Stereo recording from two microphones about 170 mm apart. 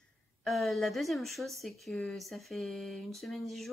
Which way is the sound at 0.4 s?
Centre (ahead or behind).